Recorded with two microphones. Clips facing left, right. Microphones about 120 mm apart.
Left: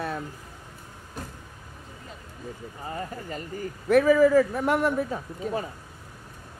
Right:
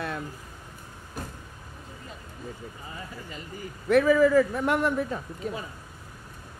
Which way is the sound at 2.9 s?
50° left (ahead or behind).